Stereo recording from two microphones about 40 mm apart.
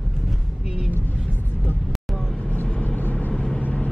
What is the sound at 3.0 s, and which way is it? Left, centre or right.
Vehicle, left.